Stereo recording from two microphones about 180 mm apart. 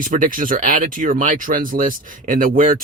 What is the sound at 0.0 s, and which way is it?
Speech, 50° right (ahead or behind).